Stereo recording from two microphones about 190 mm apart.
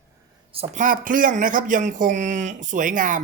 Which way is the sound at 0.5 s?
35° right (ahead or behind).